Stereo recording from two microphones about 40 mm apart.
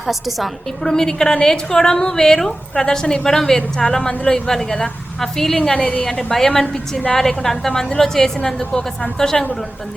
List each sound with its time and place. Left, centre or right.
0.1 s a woman's voice: centre
0.9 s a woman's voice: centre
5.7 s a woman's voice: left
6.3 s a woman's voice: centre